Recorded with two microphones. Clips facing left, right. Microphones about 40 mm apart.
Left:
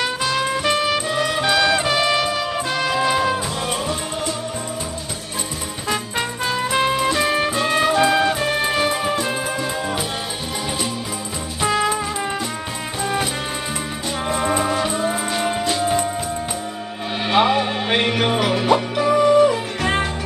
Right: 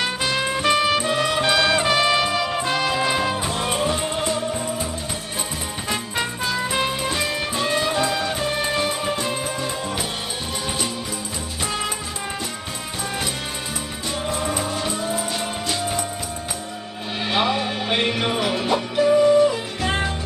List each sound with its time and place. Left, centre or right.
0.0 s music: centre
3.6 s music: right
7.5 s music: left
8.3 s music: centre
13.0 s music: centre
14.3 s music: left
17.2 s music: centre